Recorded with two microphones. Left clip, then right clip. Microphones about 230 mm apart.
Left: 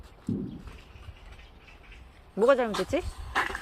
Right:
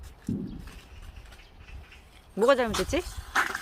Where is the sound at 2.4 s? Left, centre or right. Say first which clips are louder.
Even; centre.